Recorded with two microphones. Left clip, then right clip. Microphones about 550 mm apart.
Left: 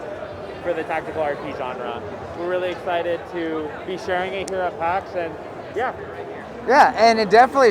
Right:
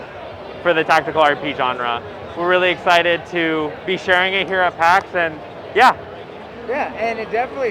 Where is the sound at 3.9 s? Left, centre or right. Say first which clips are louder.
Right 9 dB; right.